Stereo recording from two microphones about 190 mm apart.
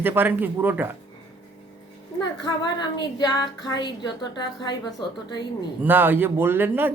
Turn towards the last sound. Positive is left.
turn(degrees=-10)  # may be behind; listen again after turning